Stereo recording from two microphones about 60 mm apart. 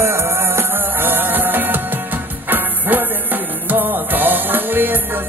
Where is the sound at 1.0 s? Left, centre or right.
Right.